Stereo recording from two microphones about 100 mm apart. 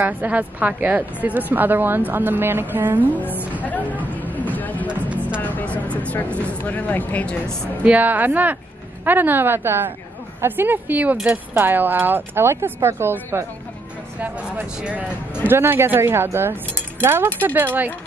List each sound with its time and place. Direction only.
0.0 s a woman's voice: 15° right (ahead or behind)
3.1 s speech: 15° left (ahead or behind)
4.1 s music: 15° left (ahead or behind)
4.8 s music: 15° right (ahead or behind)
5.4 s music: 15° left (ahead or behind)
5.9 s speech: 15° left (ahead or behind)
7.8 s a woman's voice: 15° right (ahead or behind)
14.8 s a woman's voice: 10° right (ahead or behind)
15.4 s speech: 20° right (ahead or behind)